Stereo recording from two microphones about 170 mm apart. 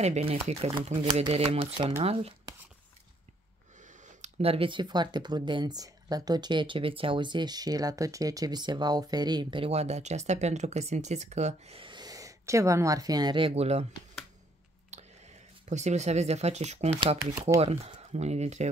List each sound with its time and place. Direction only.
0.0 s speech: 40° right (ahead or behind)
3.8 s speech: 45° right (ahead or behind)
14.9 s a sound: 40° right (ahead or behind)
15.7 s speech: 40° right (ahead or behind)